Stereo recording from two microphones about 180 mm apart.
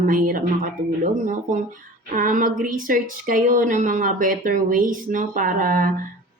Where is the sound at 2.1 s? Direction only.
50° right (ahead or behind).